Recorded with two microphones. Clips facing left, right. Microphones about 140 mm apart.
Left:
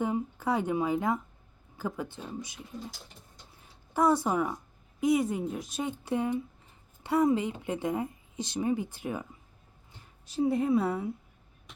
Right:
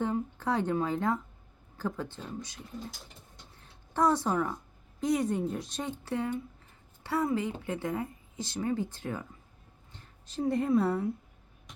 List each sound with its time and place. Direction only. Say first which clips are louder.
0.0 s a woman's voice: left 1 dB; 10° left (ahead or behind)
3.6 s a sound: left 1 dB; 10° left (ahead or behind)
4.5 s a woman's voice: left 1 dB; 5° left (ahead or behind)